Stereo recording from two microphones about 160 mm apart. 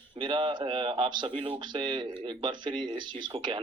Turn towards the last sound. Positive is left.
turn(degrees=-30)  # may be behind; listen again after turning